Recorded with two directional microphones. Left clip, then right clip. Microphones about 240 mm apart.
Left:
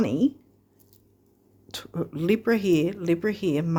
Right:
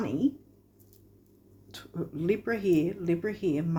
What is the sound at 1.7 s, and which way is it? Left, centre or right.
Speech, left.